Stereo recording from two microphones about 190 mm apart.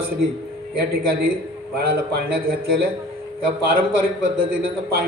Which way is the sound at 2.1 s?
55° right (ahead or behind).